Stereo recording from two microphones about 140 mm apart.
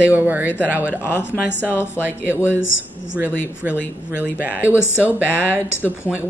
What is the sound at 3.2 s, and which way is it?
Speech, 10° right (ahead or behind).